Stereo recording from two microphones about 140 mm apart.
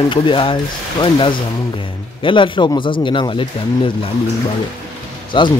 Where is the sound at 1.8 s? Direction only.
35° left (ahead or behind).